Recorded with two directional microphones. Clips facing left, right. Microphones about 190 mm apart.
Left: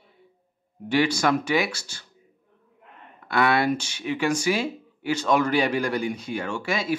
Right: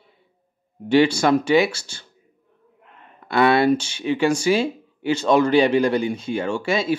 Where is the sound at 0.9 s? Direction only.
30° right (ahead or behind).